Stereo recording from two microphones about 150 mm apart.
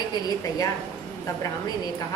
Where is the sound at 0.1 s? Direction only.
25° left (ahead or behind).